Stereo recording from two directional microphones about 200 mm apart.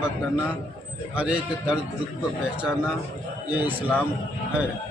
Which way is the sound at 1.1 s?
5° right (ahead or behind).